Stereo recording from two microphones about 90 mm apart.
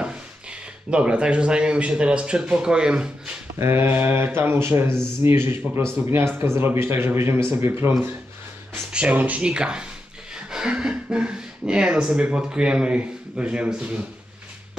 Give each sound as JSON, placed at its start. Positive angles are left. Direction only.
{"t": 0.0, "sound": "speech", "side_deg": -10}
{"t": 3.5, "sound": "speech", "side_deg": -30}
{"t": 8.9, "sound": "speech", "side_deg": -15}